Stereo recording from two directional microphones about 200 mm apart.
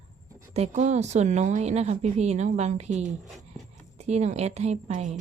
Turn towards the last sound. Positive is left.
turn(degrees=-35)  # may be behind; listen again after turning